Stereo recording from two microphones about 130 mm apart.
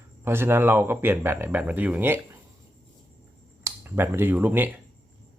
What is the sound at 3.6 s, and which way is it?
Speech, 15° right (ahead or behind).